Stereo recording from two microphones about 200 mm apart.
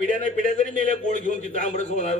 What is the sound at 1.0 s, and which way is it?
A man's voice, 40° left (ahead or behind).